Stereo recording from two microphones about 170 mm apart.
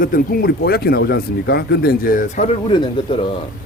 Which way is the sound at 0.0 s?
55° left (ahead or behind).